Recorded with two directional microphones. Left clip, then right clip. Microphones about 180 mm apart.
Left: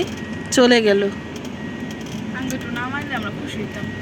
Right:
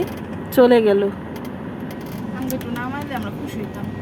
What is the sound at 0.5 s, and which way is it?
Speech, 20° left (ahead or behind).